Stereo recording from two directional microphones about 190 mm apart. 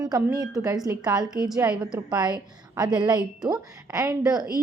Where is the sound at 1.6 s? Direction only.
5° right (ahead or behind).